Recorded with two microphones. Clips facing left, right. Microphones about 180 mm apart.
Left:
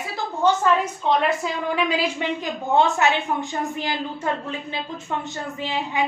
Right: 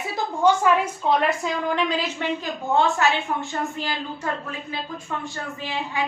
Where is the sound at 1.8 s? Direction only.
10° left (ahead or behind).